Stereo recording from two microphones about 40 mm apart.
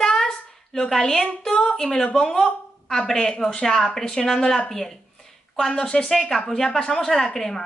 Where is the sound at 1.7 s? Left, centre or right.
Centre.